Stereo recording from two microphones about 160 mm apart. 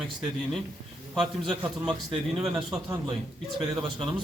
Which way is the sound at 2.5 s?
20° right (ahead or behind).